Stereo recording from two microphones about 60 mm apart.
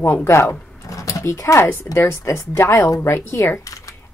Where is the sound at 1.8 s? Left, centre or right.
Left.